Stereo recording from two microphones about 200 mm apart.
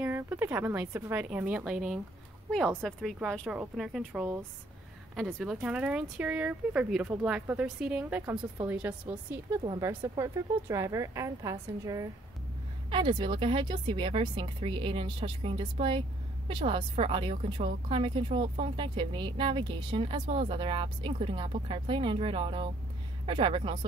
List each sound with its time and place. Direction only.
0.0 s speech: 10° right (ahead or behind)